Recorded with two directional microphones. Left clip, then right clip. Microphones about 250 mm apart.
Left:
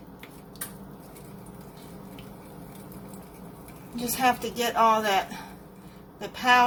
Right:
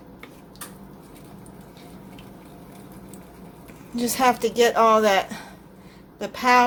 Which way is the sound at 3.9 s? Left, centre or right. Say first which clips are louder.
Right 4 dB; right.